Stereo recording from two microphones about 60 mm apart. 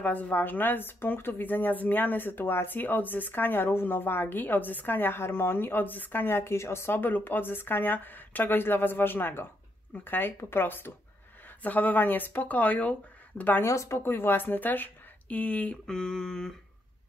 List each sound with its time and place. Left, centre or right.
0.0 s speech: left
7.0 s speech: left
13.7 s speech: left
13.9 s speech: left
15.9 s a sound: centre